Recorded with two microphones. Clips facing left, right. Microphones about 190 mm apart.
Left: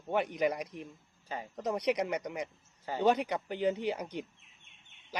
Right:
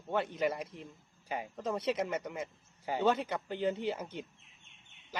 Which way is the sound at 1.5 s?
15° left (ahead or behind).